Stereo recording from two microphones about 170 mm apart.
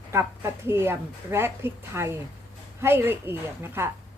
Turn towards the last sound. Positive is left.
turn(degrees=-15)  # may be behind; listen again after turning